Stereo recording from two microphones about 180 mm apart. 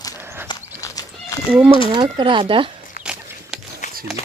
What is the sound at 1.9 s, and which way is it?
Speech, 25° right (ahead or behind).